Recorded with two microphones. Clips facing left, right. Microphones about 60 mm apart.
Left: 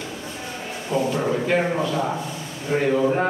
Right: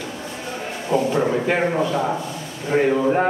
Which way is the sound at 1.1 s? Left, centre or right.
Centre.